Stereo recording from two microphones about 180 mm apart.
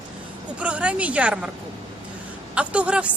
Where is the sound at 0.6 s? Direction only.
5° right (ahead or behind).